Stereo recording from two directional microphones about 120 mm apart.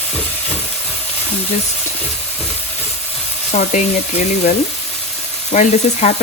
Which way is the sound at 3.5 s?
90° left.